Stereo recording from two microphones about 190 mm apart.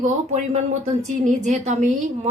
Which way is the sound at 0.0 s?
40° right (ahead or behind).